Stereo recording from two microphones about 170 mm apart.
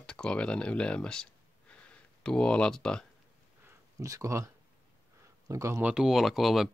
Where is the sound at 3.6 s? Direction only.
20° right (ahead or behind).